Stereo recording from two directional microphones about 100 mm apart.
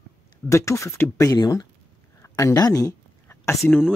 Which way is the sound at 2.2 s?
30° left (ahead or behind).